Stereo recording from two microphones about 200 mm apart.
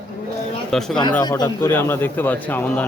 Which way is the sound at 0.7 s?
Centre (ahead or behind).